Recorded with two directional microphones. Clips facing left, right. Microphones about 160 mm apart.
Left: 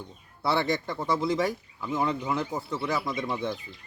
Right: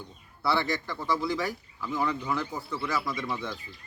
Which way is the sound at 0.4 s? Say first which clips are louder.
Left 2 dB; 25° left (ahead or behind).